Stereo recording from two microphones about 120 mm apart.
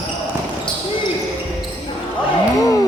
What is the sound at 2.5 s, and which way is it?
Music, 30° left (ahead or behind).